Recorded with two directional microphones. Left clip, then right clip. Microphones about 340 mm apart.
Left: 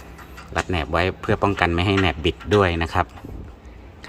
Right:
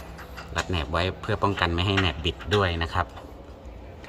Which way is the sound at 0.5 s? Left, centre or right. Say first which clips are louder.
Left 5 dB; centre.